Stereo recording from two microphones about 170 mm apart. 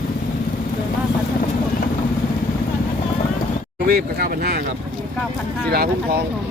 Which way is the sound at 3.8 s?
60° right (ahead or behind).